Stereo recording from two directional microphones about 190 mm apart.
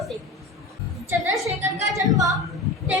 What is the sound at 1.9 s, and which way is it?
Speech, 15° right (ahead or behind).